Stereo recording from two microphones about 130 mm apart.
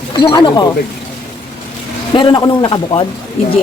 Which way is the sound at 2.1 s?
35° left (ahead or behind).